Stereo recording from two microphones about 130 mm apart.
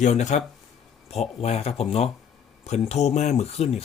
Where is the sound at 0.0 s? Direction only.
65° left (ahead or behind).